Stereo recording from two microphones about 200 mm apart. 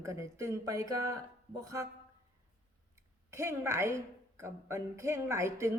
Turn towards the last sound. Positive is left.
turn(degrees=-15)  # may be behind; listen again after turning